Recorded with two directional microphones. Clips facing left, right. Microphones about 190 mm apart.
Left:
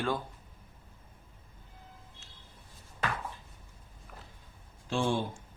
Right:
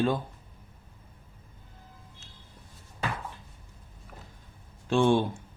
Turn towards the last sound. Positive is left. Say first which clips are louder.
# right 8 dB
turn(degrees=-60)  # may be behind; listen again after turning